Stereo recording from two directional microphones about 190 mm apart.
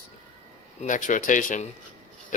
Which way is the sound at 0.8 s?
40° left (ahead or behind).